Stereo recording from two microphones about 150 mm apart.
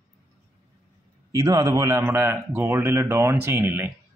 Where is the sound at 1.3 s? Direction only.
20° right (ahead or behind).